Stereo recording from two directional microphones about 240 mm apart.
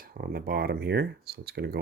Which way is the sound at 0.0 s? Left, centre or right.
Right.